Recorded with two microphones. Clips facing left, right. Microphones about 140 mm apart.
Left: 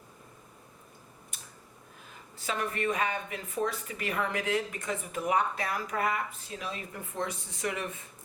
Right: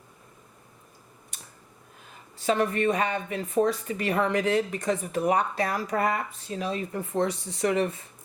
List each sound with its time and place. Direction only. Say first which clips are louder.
2.5 s speech: right 8 dB; 35° right (ahead or behind)